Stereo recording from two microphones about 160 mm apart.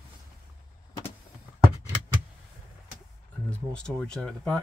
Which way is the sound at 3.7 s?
5° left (ahead or behind).